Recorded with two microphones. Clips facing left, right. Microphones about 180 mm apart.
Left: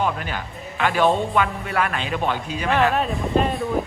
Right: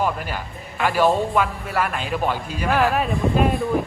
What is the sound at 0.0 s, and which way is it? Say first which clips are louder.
A man's voice: even; 5° right (ahead or behind).